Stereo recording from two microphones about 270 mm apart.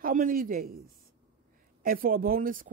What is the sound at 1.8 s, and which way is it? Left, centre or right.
Speech, right.